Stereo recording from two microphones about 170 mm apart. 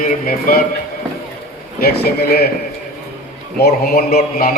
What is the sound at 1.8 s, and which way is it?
Speech, 65° left (ahead or behind).